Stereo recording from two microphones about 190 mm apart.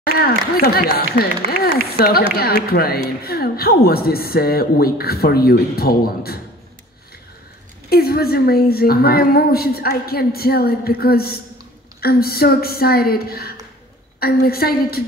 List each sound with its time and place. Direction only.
0.0 s a woman's voice: 55° left (ahead or behind)
7.9 s a woman's voice: 55° left (ahead or behind)